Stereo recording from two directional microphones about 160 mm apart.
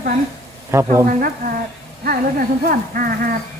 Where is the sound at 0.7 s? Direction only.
15° right (ahead or behind).